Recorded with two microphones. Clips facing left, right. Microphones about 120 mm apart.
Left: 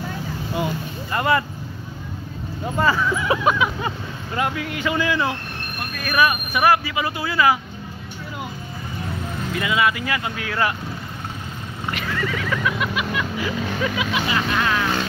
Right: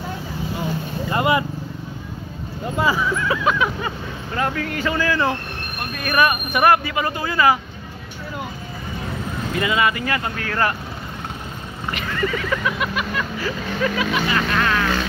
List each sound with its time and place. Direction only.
1.1 s speech: 20° right (ahead or behind)
2.8 s speech: 10° right (ahead or behind)
3.3 s speech: 15° left (ahead or behind)
5.9 s speech: centre (ahead or behind)
9.6 s speech: centre (ahead or behind)
11.9 s speech: centre (ahead or behind)
13.1 s speech: 10° left (ahead or behind)